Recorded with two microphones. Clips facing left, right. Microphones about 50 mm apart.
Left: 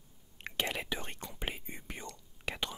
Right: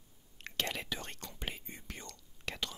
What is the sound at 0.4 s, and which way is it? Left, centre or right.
Whispering, centre.